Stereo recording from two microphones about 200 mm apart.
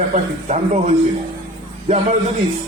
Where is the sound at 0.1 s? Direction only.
35° right (ahead or behind).